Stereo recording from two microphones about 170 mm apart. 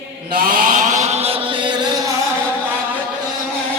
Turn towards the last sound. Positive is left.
turn(degrees=-30)  # may be behind; listen again after turning